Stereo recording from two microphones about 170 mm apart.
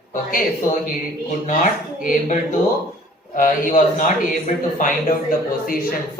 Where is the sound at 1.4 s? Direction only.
45° left (ahead or behind).